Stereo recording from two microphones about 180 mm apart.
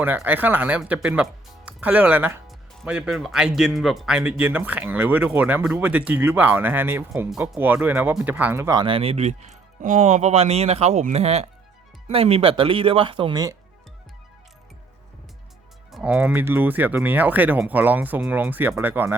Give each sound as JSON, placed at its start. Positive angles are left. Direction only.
{"t": 0.0, "sound": "speech", "side_deg": -10}
{"t": 8.8, "sound": "speech", "side_deg": -30}
{"t": 15.9, "sound": "speech", "side_deg": 0}